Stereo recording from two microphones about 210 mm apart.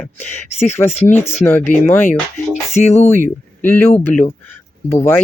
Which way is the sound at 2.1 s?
35° left (ahead or behind).